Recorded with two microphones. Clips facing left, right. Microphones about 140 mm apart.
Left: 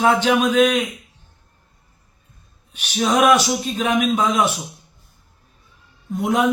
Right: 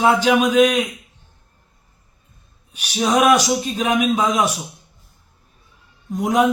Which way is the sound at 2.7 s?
10° right (ahead or behind).